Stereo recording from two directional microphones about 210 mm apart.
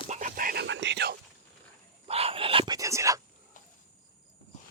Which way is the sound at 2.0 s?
25° right (ahead or behind).